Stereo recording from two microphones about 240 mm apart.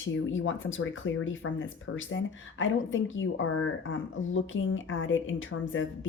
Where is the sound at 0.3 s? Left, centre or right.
Left.